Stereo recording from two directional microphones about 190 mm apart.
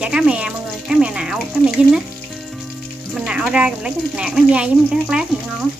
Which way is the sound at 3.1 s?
5° right (ahead or behind).